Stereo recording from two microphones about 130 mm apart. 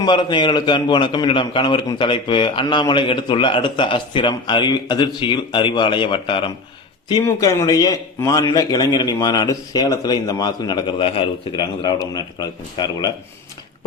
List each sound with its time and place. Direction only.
0.0 s a man's voice: 35° left (ahead or behind)
7.1 s a man's voice: 25° left (ahead or behind)